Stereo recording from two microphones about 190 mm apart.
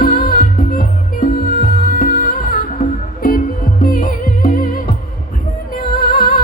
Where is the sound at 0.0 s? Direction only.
50° left (ahead or behind).